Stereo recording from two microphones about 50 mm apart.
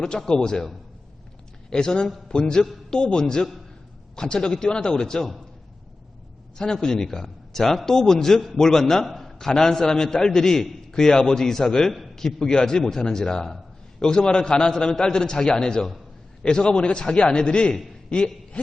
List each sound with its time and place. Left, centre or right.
0.0 s a man's voice: centre
1.7 s a man's voice: centre
6.6 s a man's voice: centre